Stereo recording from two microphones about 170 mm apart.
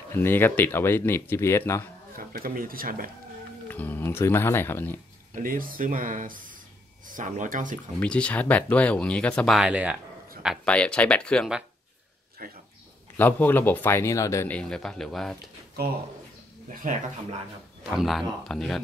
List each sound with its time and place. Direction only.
0.1 s a man's voice: 15° left (ahead or behind)
2.1 s speech: 55° right (ahead or behind)
3.6 s a man's voice: 10° left (ahead or behind)
5.3 s speech: 55° right (ahead or behind)
8.0 s a man's voice: 5° left (ahead or behind)
9.6 s speech: 5° right (ahead or behind)
12.4 s speech: 60° right (ahead or behind)
13.2 s a man's voice: 10° left (ahead or behind)
15.3 s speech: 70° right (ahead or behind)
16.8 s speech: 50° right (ahead or behind)
17.9 s speech: centre (ahead or behind)